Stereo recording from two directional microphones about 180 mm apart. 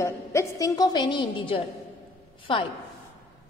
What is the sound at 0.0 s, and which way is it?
A woman's voice, 15° left (ahead or behind).